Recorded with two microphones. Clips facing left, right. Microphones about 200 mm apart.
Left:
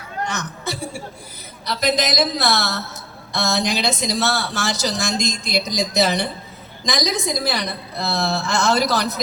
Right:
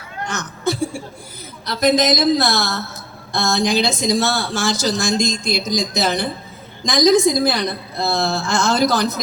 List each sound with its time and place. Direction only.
0.3 s chuckle: 50° right (ahead or behind)
1.6 s speech: 50° right (ahead or behind)